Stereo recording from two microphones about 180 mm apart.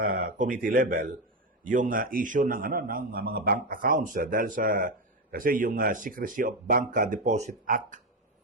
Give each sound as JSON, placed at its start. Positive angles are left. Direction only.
{"t": 0.0, "sound": "a man's voice", "side_deg": -50}